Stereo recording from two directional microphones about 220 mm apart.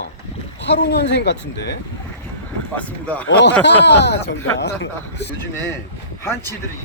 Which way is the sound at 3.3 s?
55° left (ahead or behind).